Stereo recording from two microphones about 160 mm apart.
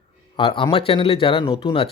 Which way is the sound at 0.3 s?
35° left (ahead or behind).